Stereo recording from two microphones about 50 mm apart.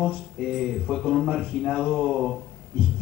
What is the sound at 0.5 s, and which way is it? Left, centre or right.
A man's voice, centre.